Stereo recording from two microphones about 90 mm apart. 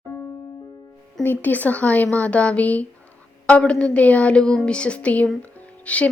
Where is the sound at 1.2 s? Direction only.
20° left (ahead or behind).